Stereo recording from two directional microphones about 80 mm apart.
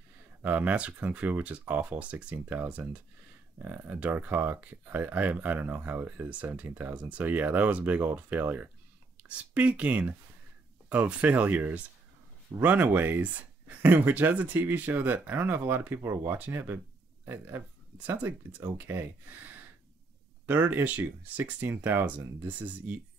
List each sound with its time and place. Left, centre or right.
0.4 s speech: right